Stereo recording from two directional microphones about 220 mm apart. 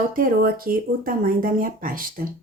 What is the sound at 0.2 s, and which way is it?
Speech, 40° right (ahead or behind).